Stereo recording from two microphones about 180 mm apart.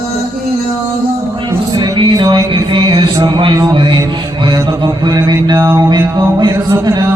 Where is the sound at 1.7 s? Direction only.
25° right (ahead or behind).